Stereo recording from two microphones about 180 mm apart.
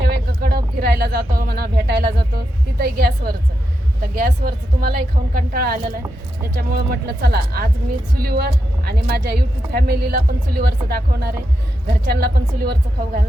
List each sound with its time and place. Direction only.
0.0 s speech: 60° right (ahead or behind)